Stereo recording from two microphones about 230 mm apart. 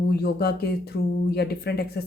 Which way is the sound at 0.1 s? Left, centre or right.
Left.